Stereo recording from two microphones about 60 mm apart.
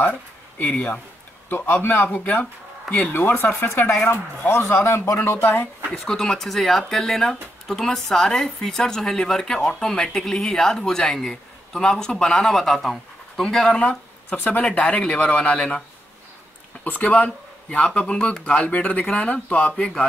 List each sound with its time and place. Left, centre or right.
0.0 s speech: left
1.5 s a man's voice: left
2.0 s speech: left
3.2 s a man's voice: left
4.9 s speech: left
6.0 s speech: centre
14.3 s speech: left
16.8 s speech: left